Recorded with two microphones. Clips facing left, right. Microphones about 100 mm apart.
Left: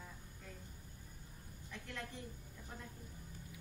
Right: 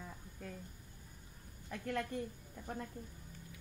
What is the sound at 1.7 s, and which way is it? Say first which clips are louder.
A woman's voice: right 9 dB; 55° right (ahead or behind).